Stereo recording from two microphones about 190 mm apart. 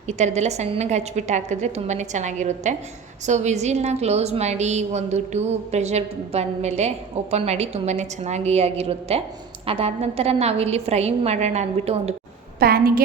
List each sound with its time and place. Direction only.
0.1 s a woman's voice: 35° right (ahead or behind)
12.5 s a woman's voice: 50° right (ahead or behind)